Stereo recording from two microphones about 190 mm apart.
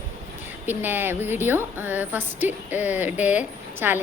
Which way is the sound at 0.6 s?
10° right (ahead or behind).